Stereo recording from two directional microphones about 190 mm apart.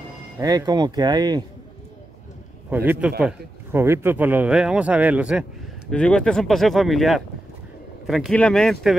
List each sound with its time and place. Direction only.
0.4 s speech: 20° right (ahead or behind)
2.7 s a man's voice: 10° right (ahead or behind)